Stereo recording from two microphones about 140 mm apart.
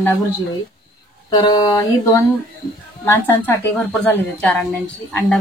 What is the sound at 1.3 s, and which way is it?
Speech, 30° left (ahead or behind).